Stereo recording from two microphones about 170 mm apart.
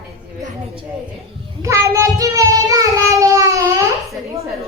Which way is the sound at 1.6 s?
15° right (ahead or behind).